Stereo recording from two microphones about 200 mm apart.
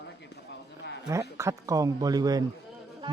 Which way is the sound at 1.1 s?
15° right (ahead or behind).